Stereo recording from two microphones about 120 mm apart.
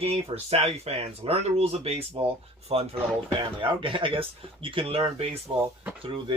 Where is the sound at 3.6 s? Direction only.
45° right (ahead or behind).